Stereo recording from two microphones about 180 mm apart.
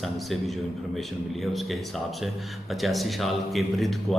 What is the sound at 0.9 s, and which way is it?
Speech, centre (ahead or behind).